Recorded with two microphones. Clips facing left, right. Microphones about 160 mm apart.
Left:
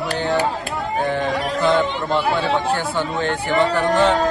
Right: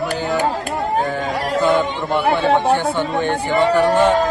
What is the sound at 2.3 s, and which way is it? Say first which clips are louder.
Speech: right 4 dB; 60° right (ahead or behind).